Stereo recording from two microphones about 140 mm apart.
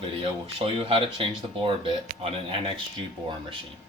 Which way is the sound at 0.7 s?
40° right (ahead or behind).